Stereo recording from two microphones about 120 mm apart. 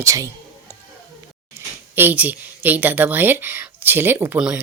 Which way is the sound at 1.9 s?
15° right (ahead or behind).